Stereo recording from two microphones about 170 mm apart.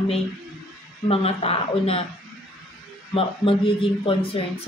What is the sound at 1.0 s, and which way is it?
Speech, 35° left (ahead or behind).